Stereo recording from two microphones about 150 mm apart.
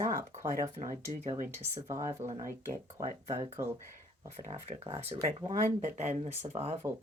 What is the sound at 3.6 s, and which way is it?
Speech, 15° right (ahead or behind).